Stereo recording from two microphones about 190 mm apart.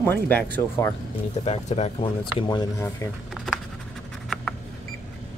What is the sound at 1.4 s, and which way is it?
Speech, 35° left (ahead or behind).